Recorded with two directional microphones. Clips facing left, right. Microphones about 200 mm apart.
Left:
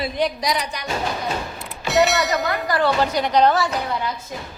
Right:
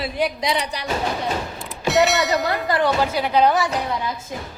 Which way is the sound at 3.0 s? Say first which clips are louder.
Left 1 dB; 5° right (ahead or behind).